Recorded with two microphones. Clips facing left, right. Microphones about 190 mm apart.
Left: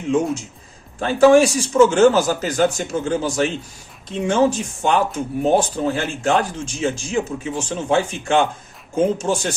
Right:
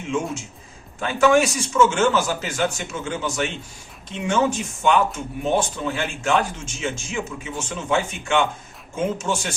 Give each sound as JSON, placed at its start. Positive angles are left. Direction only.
{"t": 0.9, "sound": "speech", "side_deg": 35}